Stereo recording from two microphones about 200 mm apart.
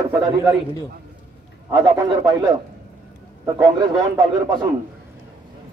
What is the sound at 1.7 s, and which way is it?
Speech, 15° right (ahead or behind).